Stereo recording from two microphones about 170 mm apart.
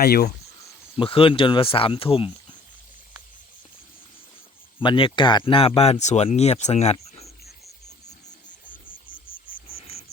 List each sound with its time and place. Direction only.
0.0 s speech: 65° left (ahead or behind)
0.9 s speech: 30° left (ahead or behind)
4.8 s speech: 30° left (ahead or behind)
8.6 s cricket: 55° left (ahead or behind)